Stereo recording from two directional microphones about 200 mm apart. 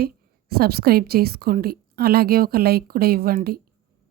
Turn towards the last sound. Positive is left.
turn(degrees=-50)  # may be behind; listen again after turning